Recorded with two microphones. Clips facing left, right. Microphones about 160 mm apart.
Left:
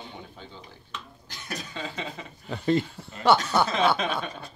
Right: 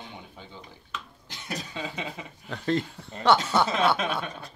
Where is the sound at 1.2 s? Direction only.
25° right (ahead or behind).